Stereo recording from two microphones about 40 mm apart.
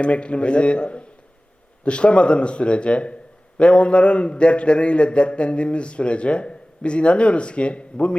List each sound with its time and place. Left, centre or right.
0.0 s a man's voice: left